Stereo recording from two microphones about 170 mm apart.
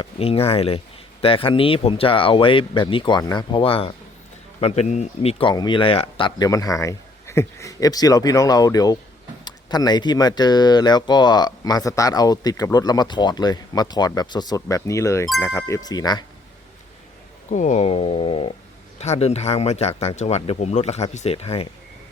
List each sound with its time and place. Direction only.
0.0 s speech: 35° left (ahead or behind)
17.5 s speech: 45° left (ahead or behind)